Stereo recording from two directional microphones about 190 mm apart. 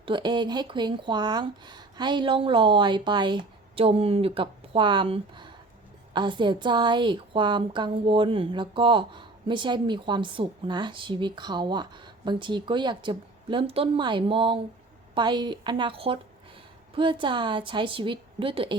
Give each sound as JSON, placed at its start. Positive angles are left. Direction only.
{"t": 0.0, "sound": "a woman's voice", "side_deg": -25}